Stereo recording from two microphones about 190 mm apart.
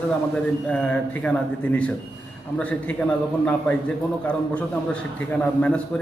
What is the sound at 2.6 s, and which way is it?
A man's voice, 5° left (ahead or behind).